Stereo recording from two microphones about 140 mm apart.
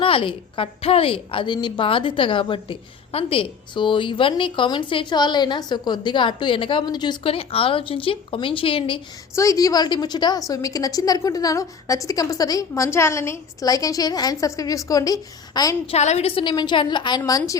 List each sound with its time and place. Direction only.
0.0 s a woman's voice: 40° left (ahead or behind)
9.3 s a woman's voice: 20° left (ahead or behind)
15.9 s a woman's voice: 50° left (ahead or behind); by 17.6 s 25° left (ahead or behind)